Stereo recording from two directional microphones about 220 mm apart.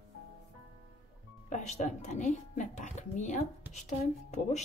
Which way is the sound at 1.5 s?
35° left (ahead or behind).